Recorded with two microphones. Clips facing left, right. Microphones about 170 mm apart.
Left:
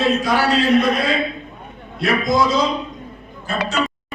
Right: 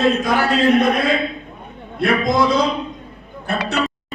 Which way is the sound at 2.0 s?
55° right (ahead or behind).